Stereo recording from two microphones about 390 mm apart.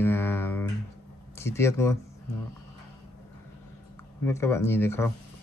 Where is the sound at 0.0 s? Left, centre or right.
Centre.